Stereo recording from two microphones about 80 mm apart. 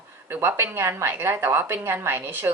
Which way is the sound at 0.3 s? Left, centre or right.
Right.